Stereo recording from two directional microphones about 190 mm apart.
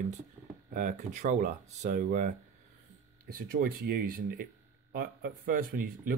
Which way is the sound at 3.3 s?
50° right (ahead or behind).